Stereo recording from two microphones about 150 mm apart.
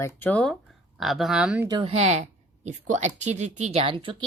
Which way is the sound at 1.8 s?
45° right (ahead or behind).